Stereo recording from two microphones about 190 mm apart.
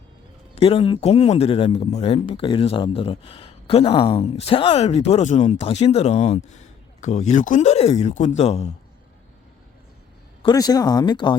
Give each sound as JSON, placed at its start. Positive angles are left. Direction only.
{"t": 0.5, "sound": "speech", "side_deg": 30}
{"t": 10.4, "sound": "speech", "side_deg": 20}